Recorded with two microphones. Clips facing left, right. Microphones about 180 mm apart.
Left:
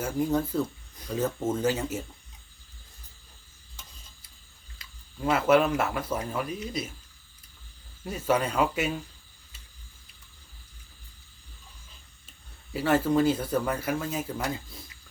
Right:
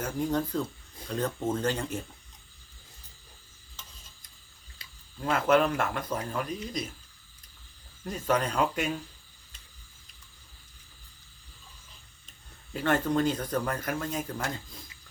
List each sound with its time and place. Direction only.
0.0 s speech: 5° left (ahead or behind)
4.8 s a sound: 30° right (ahead or behind)
5.2 s speech: 5° left (ahead or behind)
8.0 s speech: 10° left (ahead or behind)
12.7 s speech: 5° left (ahead or behind)